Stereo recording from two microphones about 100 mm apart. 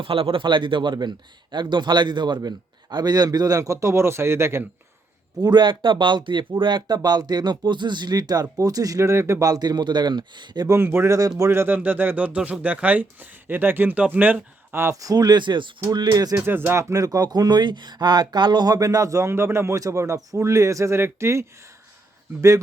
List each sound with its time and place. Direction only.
0.0 s a man's voice: 65° right (ahead or behind); by 4.6 s 25° right (ahead or behind)
5.4 s a man's voice: 45° right (ahead or behind)
10.7 s a man's voice: 25° right (ahead or behind); by 16.3 s 40° right (ahead or behind)
16.3 s speech: 20° right (ahead or behind)
16.9 s speech: 35° right (ahead or behind)